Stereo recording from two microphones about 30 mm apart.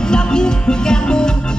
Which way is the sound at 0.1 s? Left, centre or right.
Left.